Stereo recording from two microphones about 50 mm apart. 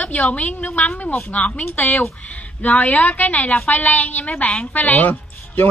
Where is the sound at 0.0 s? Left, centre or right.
Left.